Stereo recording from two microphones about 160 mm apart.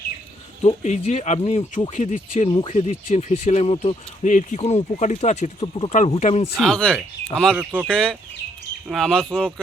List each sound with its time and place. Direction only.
0.8 s speech: 45° left (ahead or behind)
6.6 s speech: centre (ahead or behind)
7.9 s speech: 5° left (ahead or behind)